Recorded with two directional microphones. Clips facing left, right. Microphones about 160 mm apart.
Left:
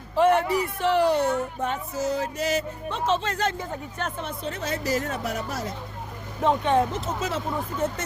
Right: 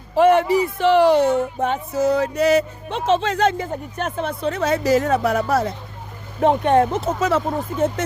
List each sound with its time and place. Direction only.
0.2 s speech: 90° right
4.0 s speech: 75° right (ahead or behind)